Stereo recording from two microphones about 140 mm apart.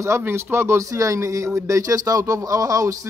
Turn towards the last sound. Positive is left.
turn(degrees=-25)  # may be behind; listen again after turning